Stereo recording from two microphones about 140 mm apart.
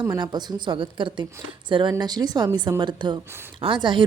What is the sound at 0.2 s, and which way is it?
A woman's voice, 30° right (ahead or behind).